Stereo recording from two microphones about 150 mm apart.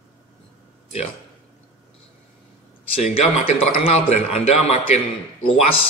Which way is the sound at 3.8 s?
40° left (ahead or behind).